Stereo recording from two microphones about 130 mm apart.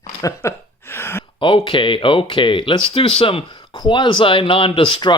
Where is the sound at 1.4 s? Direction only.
40° left (ahead or behind).